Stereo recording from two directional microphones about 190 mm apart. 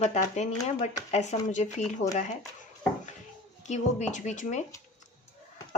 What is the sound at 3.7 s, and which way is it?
Speech, 40° left (ahead or behind).